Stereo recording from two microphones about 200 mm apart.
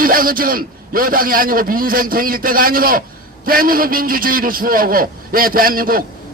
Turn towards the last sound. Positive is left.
turn(degrees=-45)  # may be behind; listen again after turning